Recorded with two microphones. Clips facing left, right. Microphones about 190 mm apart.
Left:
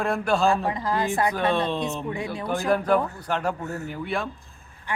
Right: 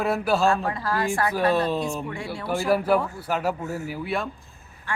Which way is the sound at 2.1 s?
20° left (ahead or behind).